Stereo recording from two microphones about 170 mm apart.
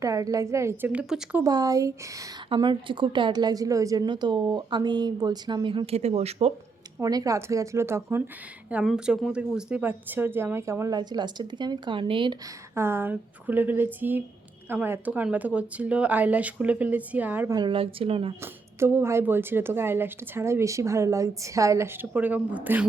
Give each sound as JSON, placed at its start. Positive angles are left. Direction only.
{"t": 0.0, "sound": "a woman's voice", "side_deg": -20}
{"t": 1.5, "sound": "a woman's voice", "side_deg": -20}
{"t": 7.0, "sound": "a woman's voice", "side_deg": -20}
{"t": 8.7, "sound": "a woman's voice", "side_deg": -5}
{"t": 12.7, "sound": "a woman's voice", "side_deg": -15}
{"t": 17.5, "sound": "speech", "side_deg": -30}
{"t": 18.8, "sound": "a woman's voice", "side_deg": -15}